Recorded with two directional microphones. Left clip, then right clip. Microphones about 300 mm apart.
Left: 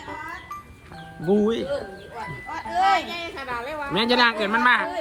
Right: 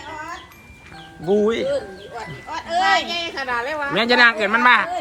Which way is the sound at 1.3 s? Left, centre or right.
Centre.